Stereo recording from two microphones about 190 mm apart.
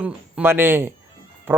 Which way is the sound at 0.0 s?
10° right (ahead or behind).